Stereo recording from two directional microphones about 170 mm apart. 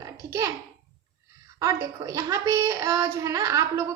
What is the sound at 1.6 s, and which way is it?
Speech, 20° right (ahead or behind).